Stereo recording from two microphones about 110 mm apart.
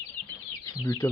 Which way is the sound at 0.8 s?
30° left (ahead or behind).